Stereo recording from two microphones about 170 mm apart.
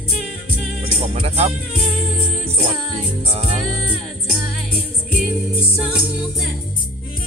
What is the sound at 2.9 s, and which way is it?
Speech, 35° right (ahead or behind).